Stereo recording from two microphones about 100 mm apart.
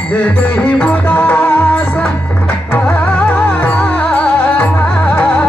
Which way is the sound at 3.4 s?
15° left (ahead or behind).